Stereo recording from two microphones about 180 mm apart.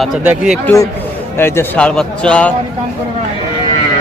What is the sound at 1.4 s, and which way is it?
Speech, 15° left (ahead or behind).